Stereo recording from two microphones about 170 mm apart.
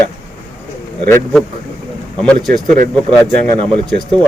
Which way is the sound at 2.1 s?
5° left (ahead or behind).